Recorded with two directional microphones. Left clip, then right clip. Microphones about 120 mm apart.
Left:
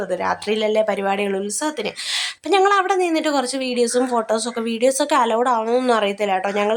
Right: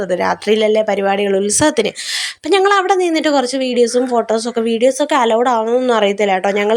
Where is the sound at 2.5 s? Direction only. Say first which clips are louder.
Right 4 dB; 35° right (ahead or behind).